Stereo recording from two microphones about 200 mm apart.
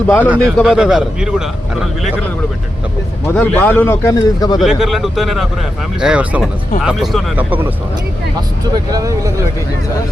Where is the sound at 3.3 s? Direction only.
10° left (ahead or behind).